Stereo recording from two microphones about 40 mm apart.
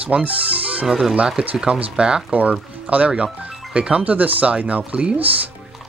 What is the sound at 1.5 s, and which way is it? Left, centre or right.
Speech, right.